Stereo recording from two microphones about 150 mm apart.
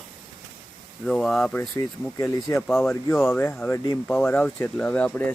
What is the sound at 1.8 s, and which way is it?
Speech, 25° left (ahead or behind).